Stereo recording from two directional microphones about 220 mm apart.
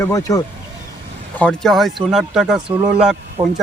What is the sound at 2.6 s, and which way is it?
Speech, 15° right (ahead or behind).